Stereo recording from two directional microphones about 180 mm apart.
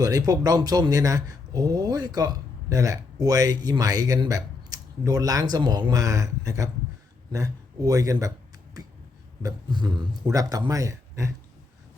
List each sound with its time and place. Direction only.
0.0 s speech: 20° right (ahead or behind)
9.4 s speech: 25° right (ahead or behind)